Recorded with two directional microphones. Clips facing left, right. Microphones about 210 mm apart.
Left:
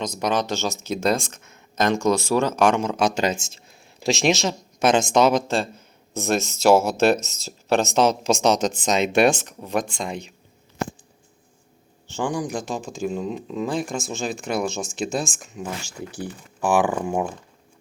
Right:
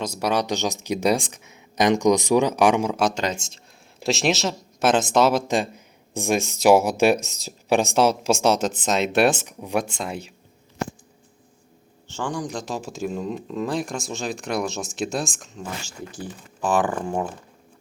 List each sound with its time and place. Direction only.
0.0 s speech: 10° right (ahead or behind)
5.5 s speech: 15° right (ahead or behind)
12.1 s speech: 10° left (ahead or behind)
12.7 s speech: centre (ahead or behind)